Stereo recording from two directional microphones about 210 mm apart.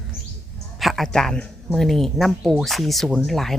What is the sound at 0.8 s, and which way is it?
Speech, centre (ahead or behind).